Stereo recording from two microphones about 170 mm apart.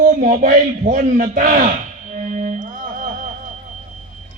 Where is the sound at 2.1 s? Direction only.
45° right (ahead or behind).